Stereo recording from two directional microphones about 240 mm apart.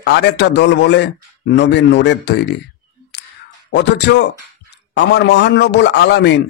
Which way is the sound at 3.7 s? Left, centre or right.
Left.